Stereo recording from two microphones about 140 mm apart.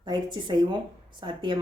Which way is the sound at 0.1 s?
30° right (ahead or behind).